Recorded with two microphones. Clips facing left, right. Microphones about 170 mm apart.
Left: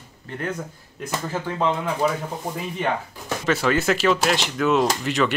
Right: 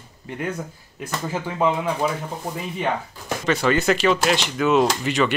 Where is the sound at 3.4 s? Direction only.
5° left (ahead or behind).